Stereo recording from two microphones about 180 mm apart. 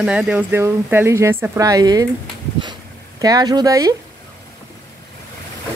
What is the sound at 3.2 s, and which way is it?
Speech, 20° right (ahead or behind).